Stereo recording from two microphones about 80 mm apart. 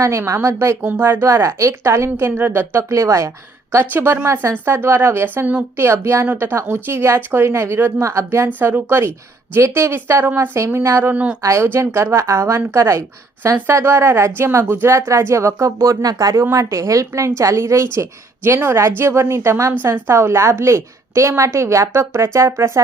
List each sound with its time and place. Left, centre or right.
0.0 s a woman's voice: right
3.0 s a woman's voice: right
8.0 s a woman's voice: right
8.4 s a woman's voice: right
11.1 s speech: centre
11.4 s a woman's voice: right
16.3 s a woman's voice: right